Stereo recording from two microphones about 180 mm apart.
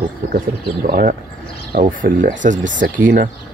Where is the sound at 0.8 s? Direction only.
50° right (ahead or behind).